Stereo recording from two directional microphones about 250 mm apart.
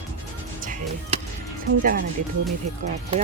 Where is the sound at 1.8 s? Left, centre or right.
Right.